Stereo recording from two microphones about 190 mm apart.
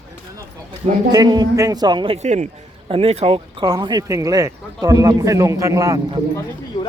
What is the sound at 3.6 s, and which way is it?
A man's voice, 20° right (ahead or behind).